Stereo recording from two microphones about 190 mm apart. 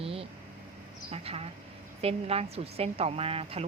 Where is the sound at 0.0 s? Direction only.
30° right (ahead or behind).